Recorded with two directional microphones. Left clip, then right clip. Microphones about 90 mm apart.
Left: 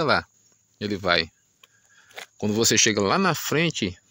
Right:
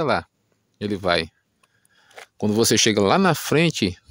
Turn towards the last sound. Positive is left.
turn(degrees=-60)  # may be behind; listen again after turning